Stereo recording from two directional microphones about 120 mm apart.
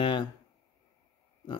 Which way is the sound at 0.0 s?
40° left (ahead or behind).